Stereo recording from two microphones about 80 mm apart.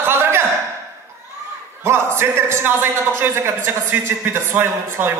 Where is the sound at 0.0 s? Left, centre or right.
Right.